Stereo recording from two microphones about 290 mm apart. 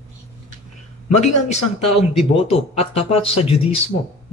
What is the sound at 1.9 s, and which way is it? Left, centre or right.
Speech, centre.